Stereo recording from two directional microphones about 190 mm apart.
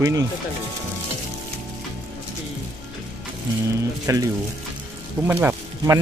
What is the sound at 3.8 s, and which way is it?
Speech, 15° right (ahead or behind).